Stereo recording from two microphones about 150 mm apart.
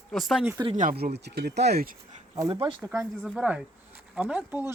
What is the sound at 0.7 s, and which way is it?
Speech, 60° right (ahead or behind).